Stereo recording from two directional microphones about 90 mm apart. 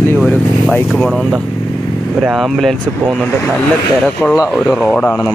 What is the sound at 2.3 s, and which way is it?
Speech, centre (ahead or behind).